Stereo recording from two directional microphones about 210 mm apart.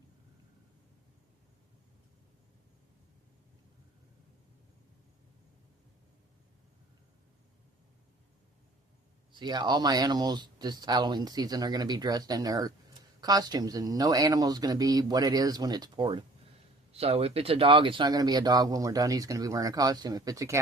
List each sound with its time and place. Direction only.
9.3 s speech: 20° right (ahead or behind)